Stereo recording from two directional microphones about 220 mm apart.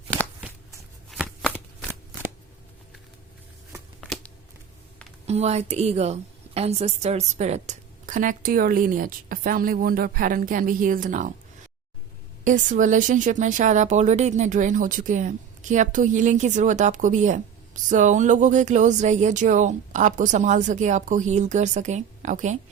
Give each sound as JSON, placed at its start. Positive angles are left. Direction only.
{"t": 0.2, "sound": "shuffling cards", "side_deg": -10}
{"t": 4.0, "sound": "a sound", "side_deg": 5}
{"t": 5.2, "sound": "a woman's voice", "side_deg": -30}
{"t": 12.5, "sound": "a woman's voice", "side_deg": -35}